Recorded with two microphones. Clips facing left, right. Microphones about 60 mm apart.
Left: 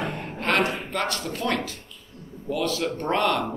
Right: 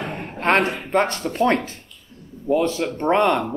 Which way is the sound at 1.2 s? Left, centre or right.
Right.